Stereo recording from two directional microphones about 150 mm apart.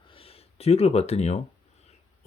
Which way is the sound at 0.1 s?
40° left (ahead or behind).